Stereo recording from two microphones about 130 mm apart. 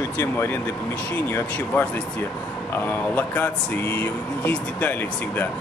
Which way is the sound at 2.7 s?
15° left (ahead or behind).